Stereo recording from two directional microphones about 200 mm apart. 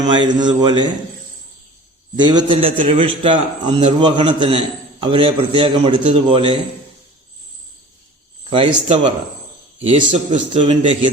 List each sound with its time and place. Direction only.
0.0 s a man's voice: 20° right (ahead or behind)
2.1 s a man's voice: 20° right (ahead or behind)
8.4 s a man's voice: 25° right (ahead or behind)